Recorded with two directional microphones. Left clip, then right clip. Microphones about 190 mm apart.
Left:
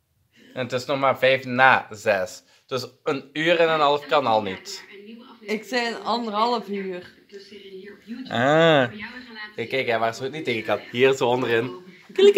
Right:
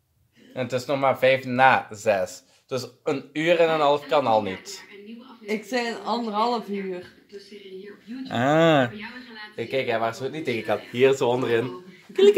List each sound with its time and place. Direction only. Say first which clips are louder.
0.6 s speech: left 1 dB; centre (ahead or behind)
5.5 s speech: left 1 dB; 30° right (ahead or behind)
8.3 s speech: left 2 dB; 5° right (ahead or behind)
9.6 s speech: left 2 dB; 25° left (ahead or behind); by 11.7 s 5° left (ahead or behind)
12.1 s speech: left 1 dB; 20° left (ahead or behind)